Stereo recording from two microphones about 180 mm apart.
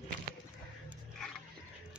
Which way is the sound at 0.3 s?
60° right (ahead or behind).